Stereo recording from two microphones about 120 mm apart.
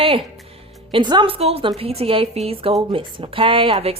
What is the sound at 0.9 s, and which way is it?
Speech, 45° right (ahead or behind).